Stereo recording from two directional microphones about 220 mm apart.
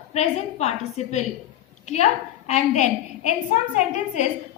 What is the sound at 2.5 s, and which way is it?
Speech, 30° left (ahead or behind).